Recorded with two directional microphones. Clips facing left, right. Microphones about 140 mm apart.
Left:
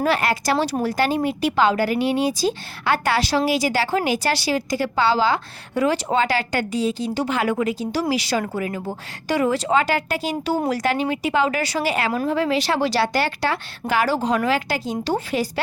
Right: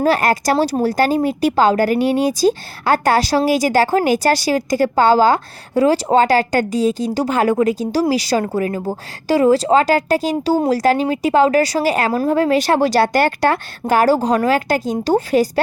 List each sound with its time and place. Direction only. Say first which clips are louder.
0.0 s speech: right 5 dB; 45° right (ahead or behind)